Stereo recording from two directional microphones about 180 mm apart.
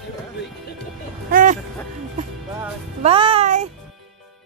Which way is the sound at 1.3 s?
50° right (ahead or behind).